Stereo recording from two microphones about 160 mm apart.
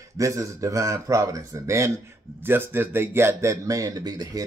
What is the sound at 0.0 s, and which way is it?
Speech, 20° right (ahead or behind).